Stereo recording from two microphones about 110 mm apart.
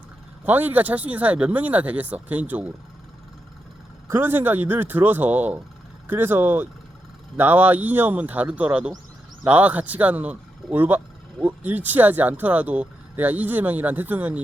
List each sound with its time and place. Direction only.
0.4 s speech: 15° right (ahead or behind)
4.1 s speech: 20° right (ahead or behind)